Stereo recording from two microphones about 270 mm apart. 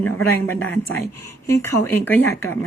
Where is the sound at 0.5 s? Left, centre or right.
Left.